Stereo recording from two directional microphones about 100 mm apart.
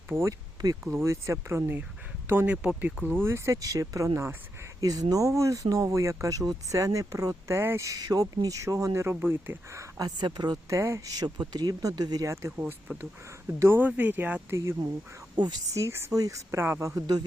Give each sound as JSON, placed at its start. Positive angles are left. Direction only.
{"t": 0.1, "sound": "speech", "side_deg": -25}
{"t": 2.6, "sound": "speech", "side_deg": -10}
{"t": 4.8, "sound": "speech", "side_deg": -40}
{"t": 10.0, "sound": "speech", "side_deg": -45}
{"t": 10.7, "sound": "speech", "side_deg": -30}
{"t": 12.5, "sound": "speech", "side_deg": -25}
{"t": 14.5, "sound": "speech", "side_deg": -30}
{"t": 15.4, "sound": "speech", "side_deg": -45}
{"t": 15.7, "sound": "speech", "side_deg": -30}